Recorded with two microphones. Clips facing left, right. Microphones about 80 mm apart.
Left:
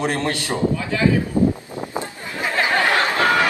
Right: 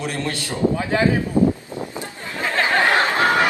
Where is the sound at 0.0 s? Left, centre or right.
Left.